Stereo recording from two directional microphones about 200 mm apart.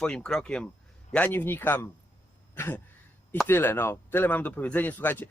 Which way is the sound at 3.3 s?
10° left (ahead or behind).